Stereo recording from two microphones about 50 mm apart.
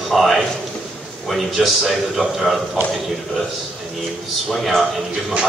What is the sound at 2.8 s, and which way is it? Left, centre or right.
Speech, right.